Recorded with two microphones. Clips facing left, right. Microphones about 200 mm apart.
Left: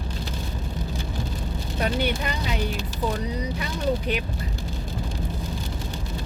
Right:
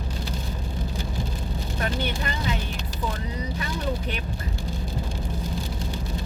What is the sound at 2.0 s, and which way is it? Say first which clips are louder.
Speech: left 3 dB; 15° left (ahead or behind).